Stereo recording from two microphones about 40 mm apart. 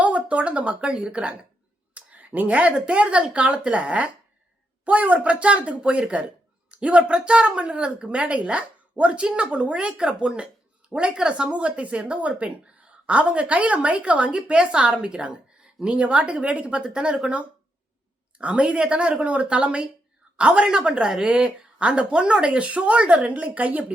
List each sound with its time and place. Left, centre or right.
0.0 s a sound: right
1.0 s speech: right
18.3 s speech: right
21.1 s speech: centre
21.8 s speech: right